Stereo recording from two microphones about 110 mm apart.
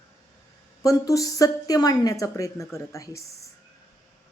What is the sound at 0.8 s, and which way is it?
Speech, 30° left (ahead or behind).